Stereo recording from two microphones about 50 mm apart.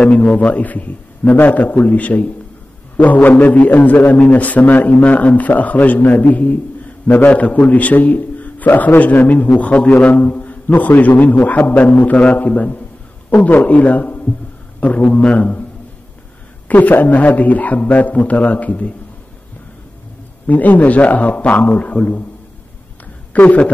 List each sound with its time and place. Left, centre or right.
0.1 s a man's voice: left
16.6 s speech: left
20.4 s speech: left
23.3 s speech: left